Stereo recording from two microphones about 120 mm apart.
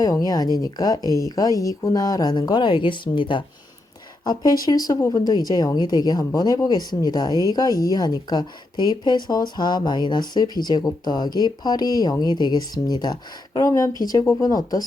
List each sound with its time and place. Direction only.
0.0 s speech: 30° left (ahead or behind)